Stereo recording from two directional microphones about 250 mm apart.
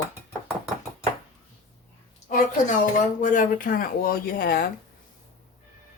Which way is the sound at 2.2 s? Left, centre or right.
Left.